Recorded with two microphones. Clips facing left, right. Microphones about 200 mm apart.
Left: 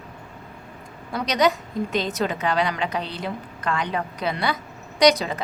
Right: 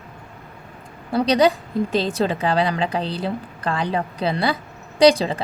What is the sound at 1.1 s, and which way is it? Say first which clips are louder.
A woman's voice: right 5 dB; 30° right (ahead or behind).